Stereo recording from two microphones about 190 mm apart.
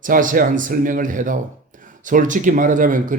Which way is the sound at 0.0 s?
45° right (ahead or behind).